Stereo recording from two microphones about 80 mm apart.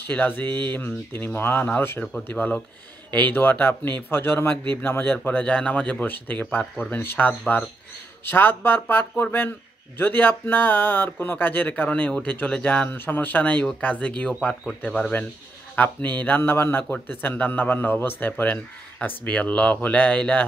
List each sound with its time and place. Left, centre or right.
0.0 s a man's voice: left
2.3 s a man's voice: centre